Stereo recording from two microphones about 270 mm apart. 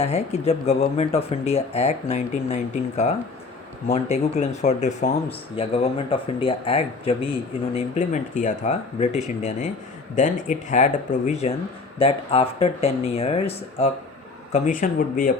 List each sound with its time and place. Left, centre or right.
0.0 s speech: left